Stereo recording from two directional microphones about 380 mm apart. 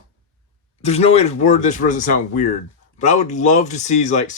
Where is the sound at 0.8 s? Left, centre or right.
Centre.